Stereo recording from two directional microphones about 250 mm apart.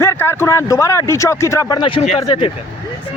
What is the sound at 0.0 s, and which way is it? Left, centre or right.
Speech, centre.